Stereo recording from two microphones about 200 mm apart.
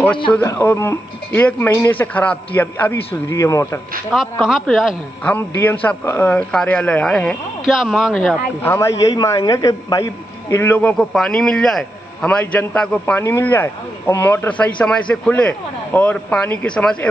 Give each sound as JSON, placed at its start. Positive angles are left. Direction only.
{"t": 0.3, "sound": "a man's voice", "side_deg": 15}
{"t": 4.1, "sound": "speech", "side_deg": 0}
{"t": 8.6, "sound": "a man's voice", "side_deg": 15}